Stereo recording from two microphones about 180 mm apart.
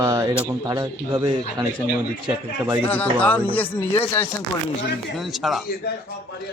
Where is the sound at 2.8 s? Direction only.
10° left (ahead or behind).